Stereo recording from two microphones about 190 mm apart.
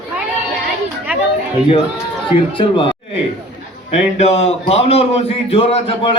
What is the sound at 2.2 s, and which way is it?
Speech, 25° left (ahead or behind).